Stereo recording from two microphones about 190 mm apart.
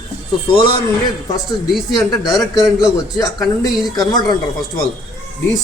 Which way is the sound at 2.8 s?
20° left (ahead or behind).